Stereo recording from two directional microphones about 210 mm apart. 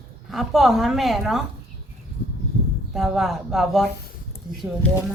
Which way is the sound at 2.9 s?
Centre (ahead or behind).